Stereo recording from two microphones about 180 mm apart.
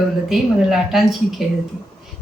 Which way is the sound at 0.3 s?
Centre (ahead or behind).